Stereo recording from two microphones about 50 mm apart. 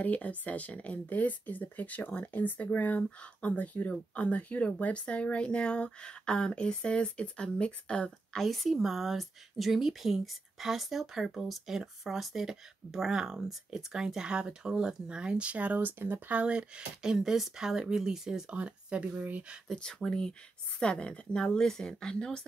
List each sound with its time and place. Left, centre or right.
0.0 s speech: left
8.4 s speech: centre
18.5 s speech: right
19.7 s speech: centre